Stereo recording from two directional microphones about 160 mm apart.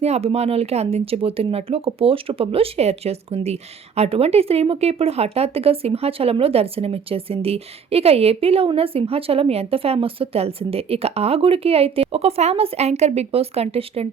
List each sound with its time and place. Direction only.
0.0 s speech: 40° right (ahead or behind)